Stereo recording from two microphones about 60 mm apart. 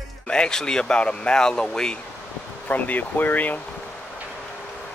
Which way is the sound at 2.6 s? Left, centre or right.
Left.